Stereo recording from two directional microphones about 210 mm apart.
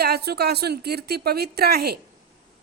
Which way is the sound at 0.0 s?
50° right (ahead or behind).